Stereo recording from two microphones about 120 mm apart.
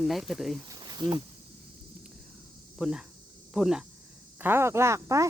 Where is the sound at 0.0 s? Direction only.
Centre (ahead or behind).